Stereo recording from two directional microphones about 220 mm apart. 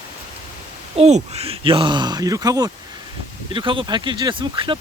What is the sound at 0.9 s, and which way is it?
Speech, 30° right (ahead or behind).